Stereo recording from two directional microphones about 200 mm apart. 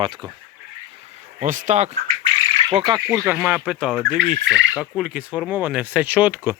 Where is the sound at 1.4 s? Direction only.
40° right (ahead or behind).